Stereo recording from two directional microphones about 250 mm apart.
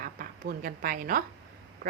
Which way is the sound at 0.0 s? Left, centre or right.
Right.